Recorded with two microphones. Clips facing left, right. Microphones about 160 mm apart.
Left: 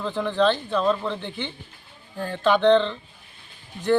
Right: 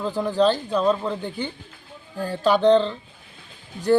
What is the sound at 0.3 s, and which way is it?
Speech, 40° right (ahead or behind).